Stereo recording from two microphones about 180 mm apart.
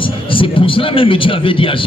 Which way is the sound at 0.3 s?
30° left (ahead or behind).